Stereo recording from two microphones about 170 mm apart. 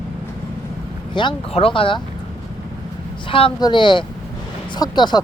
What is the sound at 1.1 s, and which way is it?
Speech, 30° left (ahead or behind).